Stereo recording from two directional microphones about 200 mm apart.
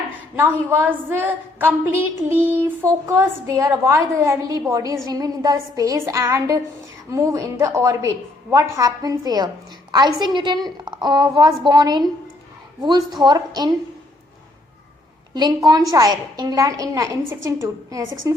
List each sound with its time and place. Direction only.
0.3 s a woman's voice: 10° right (ahead or behind)
15.4 s a woman's voice: 20° right (ahead or behind)